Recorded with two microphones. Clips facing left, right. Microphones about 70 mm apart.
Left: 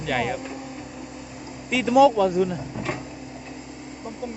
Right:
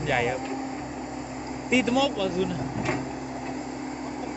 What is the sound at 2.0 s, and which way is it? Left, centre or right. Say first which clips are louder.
Speech: left 8 dB; left.